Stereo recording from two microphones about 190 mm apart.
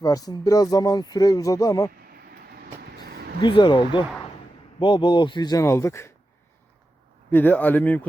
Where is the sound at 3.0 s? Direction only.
55° right (ahead or behind).